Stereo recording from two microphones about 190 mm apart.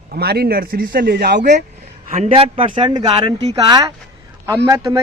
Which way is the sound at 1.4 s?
40° right (ahead or behind).